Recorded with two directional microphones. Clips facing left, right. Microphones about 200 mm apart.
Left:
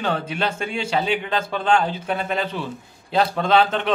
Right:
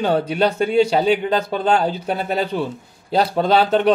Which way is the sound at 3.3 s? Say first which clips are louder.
Right 4 dB; 35° right (ahead or behind).